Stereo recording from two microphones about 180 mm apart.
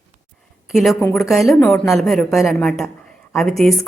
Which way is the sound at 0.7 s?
Centre (ahead or behind).